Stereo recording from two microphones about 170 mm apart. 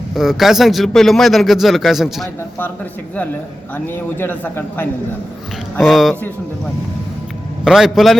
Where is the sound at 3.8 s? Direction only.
10° left (ahead or behind).